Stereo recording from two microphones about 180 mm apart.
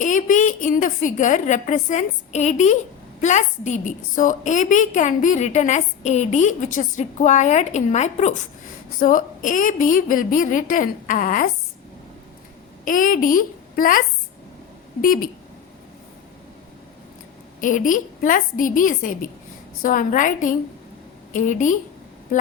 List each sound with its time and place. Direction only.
0.0 s a woman's voice: 45° left (ahead or behind)
12.8 s a woman's voice: 50° left (ahead or behind)
15.0 s a woman's voice: 50° left (ahead or behind)
17.6 s a woman's voice: 45° left (ahead or behind)